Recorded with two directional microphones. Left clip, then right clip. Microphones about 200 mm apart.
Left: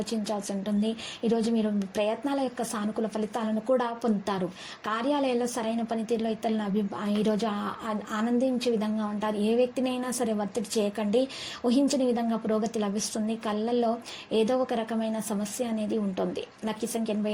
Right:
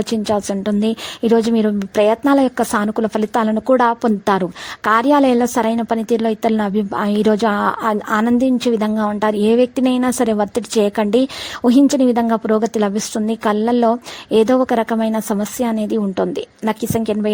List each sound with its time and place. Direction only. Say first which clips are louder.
0.0 s a woman's voice: right 13 dB; 45° right (ahead or behind)